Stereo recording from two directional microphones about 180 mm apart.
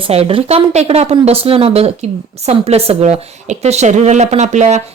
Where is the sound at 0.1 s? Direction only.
35° right (ahead or behind).